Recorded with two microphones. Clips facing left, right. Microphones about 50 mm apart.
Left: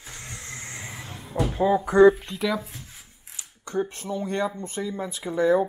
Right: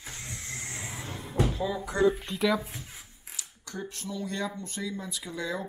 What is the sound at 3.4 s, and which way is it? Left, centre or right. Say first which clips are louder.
Speech: left 11 dB; left.